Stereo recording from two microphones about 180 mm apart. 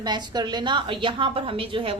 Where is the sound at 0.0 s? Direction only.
25° right (ahead or behind).